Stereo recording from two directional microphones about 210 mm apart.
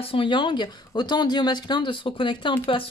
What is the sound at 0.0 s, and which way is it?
Speech, 25° left (ahead or behind).